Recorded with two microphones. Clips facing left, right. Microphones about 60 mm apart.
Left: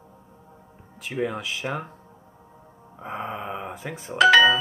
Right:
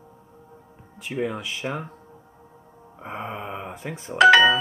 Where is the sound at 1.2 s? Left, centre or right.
Centre.